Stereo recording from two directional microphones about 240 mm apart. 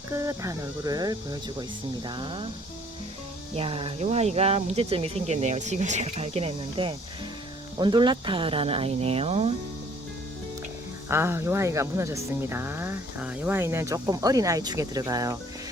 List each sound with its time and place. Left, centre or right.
0.1 s speech: centre
3.5 s speech: right
11.1 s speech: centre